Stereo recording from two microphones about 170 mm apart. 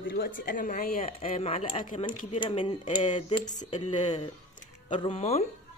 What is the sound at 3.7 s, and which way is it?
Speech, 40° left (ahead or behind).